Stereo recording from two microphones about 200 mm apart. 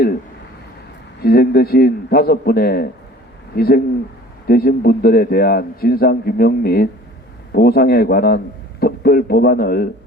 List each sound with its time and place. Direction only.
1.2 s a man's voice: 50° left (ahead or behind)